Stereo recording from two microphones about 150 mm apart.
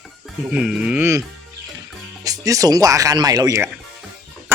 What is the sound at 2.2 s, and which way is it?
Speech, 25° right (ahead or behind).